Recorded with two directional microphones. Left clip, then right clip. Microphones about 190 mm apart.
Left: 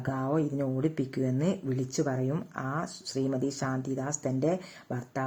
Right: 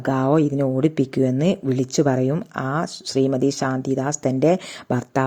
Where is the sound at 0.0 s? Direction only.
35° right (ahead or behind).